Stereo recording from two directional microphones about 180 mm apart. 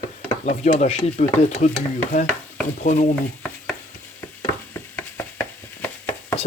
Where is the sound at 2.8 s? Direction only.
40° left (ahead or behind).